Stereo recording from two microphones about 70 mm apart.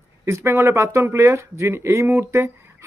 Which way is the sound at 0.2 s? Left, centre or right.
Right.